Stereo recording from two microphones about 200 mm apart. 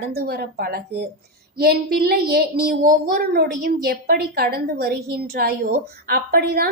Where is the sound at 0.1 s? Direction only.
55° right (ahead or behind).